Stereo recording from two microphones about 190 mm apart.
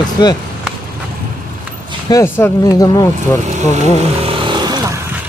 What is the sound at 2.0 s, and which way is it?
Speech, 15° left (ahead or behind).